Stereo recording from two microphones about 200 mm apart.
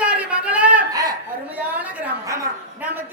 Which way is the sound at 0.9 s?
20° right (ahead or behind).